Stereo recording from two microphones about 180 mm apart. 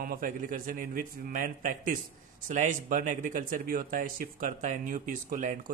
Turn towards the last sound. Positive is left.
turn(degrees=-45)  # may be behind; listen again after turning